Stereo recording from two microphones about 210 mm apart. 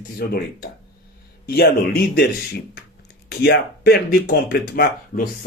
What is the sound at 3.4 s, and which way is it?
Speech, 50° left (ahead or behind).